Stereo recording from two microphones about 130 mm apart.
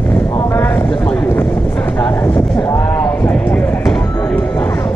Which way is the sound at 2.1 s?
15° left (ahead or behind).